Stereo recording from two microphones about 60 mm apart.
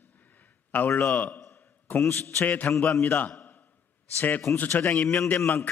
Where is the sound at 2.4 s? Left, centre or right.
Left.